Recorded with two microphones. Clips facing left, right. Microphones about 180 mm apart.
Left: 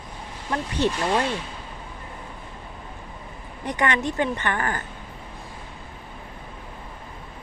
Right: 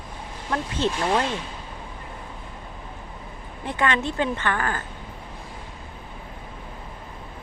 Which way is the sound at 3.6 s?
15° left (ahead or behind).